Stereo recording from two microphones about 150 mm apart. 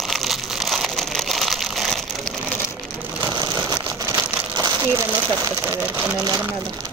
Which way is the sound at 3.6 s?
20° right (ahead or behind).